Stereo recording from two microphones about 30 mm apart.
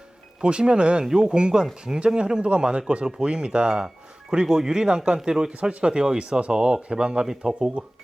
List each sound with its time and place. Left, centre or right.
0.4 s speech: right
7.3 s speech: centre